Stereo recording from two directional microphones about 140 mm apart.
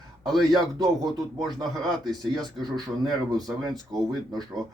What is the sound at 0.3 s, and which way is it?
Speech, centre (ahead or behind).